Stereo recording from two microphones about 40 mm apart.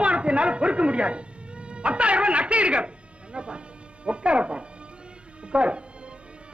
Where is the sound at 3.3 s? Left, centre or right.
Right.